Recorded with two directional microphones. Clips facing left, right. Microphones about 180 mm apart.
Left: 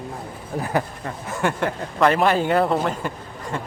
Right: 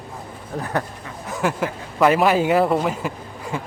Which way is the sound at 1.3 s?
Centre (ahead or behind).